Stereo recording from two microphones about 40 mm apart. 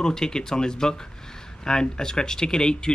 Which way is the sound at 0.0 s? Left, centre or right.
Centre.